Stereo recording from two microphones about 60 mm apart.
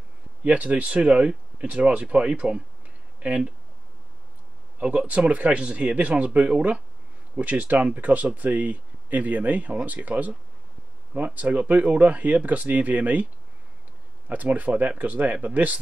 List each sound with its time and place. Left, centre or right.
0.4 s speech: centre
4.7 s speech: right
14.3 s speech: right